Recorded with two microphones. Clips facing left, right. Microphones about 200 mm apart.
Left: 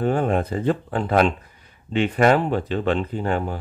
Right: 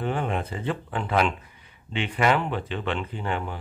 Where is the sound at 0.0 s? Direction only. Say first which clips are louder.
Left 7 dB; 45° left (ahead or behind).